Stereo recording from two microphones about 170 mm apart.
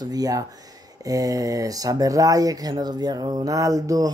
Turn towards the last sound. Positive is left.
turn(degrees=-20)  # may be behind; listen again after turning